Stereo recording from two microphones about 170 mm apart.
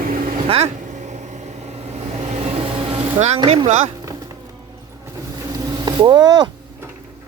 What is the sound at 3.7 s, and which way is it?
Speech, 45° right (ahead or behind).